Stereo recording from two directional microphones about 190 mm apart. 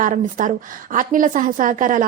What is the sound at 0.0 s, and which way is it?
A woman's voice, 45° right (ahead or behind).